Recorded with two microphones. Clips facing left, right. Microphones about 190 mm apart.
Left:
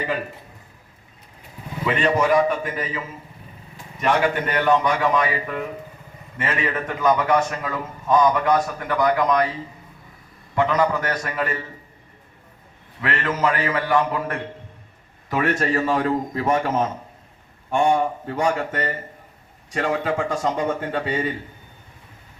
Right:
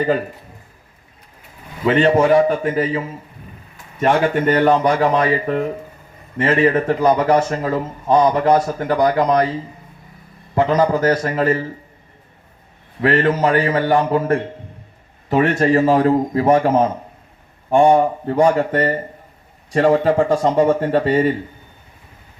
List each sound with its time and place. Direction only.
1.8 s a man's voice: 30° right (ahead or behind)
13.0 s a man's voice: 35° right (ahead or behind)
15.4 s a man's voice: 30° right (ahead or behind)